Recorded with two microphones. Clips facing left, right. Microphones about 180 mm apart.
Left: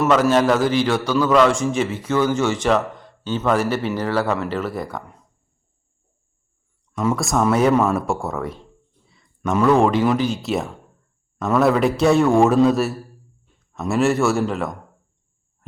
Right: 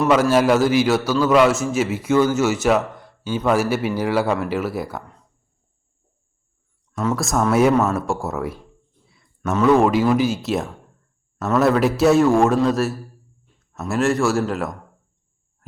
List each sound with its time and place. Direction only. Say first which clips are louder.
0.1 s a man's voice: right 1 dB; 10° right (ahead or behind)
7.2 s speech: right 1 dB; centre (ahead or behind)
9.0 s a sound: left 1 dB; 5° right (ahead or behind)
9.6 s speech: right 1 dB; 5° right (ahead or behind)